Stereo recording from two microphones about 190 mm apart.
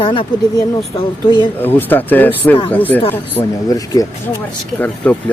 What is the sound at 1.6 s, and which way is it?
Speech, 10° left (ahead or behind).